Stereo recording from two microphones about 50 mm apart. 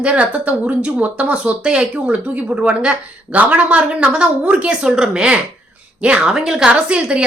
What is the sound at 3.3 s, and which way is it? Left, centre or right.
A woman's voice, right.